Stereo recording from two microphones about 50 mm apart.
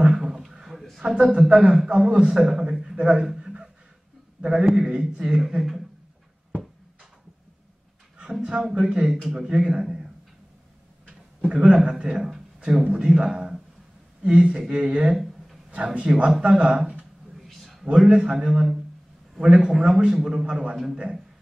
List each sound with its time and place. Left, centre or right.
0.1 s a sound: centre
1.0 s a man's voice: centre
5.4 s a man's voice: centre
8.2 s speech: right
9.1 s a man's voice: centre
11.1 s a sound: right
11.7 s a man's voice: centre
14.2 s speech: right
17.5 s a sound: centre
18.0 s a man's voice: centre